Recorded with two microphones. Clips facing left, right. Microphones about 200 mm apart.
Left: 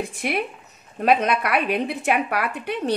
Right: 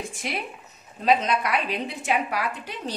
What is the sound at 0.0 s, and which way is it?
Speech, 60° left (ahead or behind).